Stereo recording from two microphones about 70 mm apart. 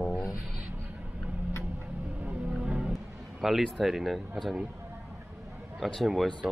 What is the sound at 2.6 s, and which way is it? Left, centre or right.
Music, centre.